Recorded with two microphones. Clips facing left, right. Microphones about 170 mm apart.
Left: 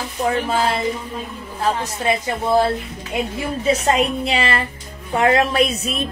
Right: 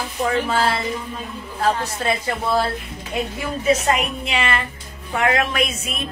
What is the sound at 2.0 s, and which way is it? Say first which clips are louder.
Speech: left 3 dB; 15° left (ahead or behind).